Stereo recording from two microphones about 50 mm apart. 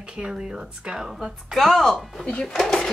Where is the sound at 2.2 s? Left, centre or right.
Centre.